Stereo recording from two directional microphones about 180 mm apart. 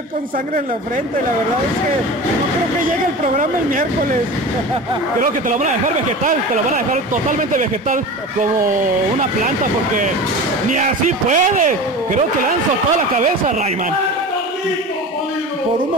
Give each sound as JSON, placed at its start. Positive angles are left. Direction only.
{"t": 5.2, "sound": "speech", "side_deg": -45}
{"t": 10.7, "sound": "speech", "side_deg": -45}